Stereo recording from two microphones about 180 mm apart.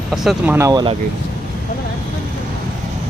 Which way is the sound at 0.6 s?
20° right (ahead or behind).